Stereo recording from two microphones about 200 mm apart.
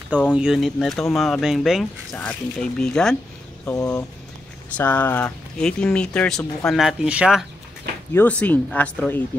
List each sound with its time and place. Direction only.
0.3 s speech: 5° right (ahead or behind)
3.6 s speech: 15° left (ahead or behind); by 7.4 s 5° right (ahead or behind)
8.1 s speech: 10° left (ahead or behind)